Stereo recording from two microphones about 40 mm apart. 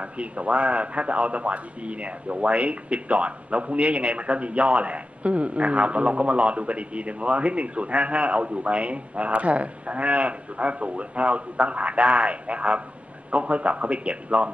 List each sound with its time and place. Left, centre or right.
0.0 s a man's voice: right